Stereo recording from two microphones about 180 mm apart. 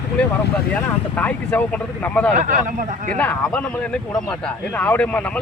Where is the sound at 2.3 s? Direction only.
45° right (ahead or behind).